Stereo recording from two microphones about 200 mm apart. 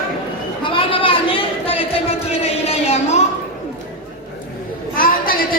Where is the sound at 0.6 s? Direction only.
25° left (ahead or behind).